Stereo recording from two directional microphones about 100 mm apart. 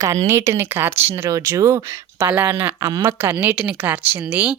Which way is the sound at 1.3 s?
35° right (ahead or behind).